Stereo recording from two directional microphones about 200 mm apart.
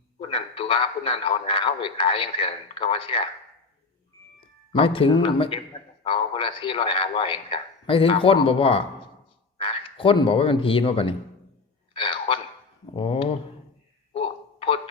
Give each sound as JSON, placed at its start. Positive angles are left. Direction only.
{"t": 0.2, "sound": "a man's voice", "side_deg": 30}
{"t": 4.7, "sound": "a man's voice", "side_deg": 25}
{"t": 14.1, "sound": "a sound", "side_deg": 25}